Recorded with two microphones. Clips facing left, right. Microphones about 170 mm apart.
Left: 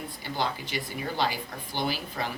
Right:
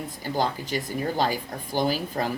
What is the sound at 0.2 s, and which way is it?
Speech, 45° right (ahead or behind).